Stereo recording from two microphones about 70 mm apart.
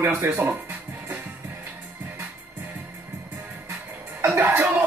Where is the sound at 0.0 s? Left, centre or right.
Right.